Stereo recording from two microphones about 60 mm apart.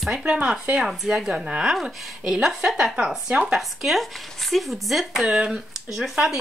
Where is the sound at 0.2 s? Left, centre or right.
Centre.